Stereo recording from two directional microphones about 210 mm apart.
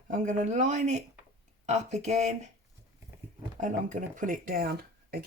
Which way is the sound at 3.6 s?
35° right (ahead or behind).